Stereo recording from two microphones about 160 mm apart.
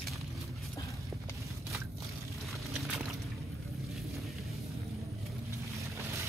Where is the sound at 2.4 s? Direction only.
Centre (ahead or behind).